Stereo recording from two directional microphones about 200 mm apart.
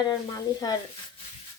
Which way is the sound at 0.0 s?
20° left (ahead or behind).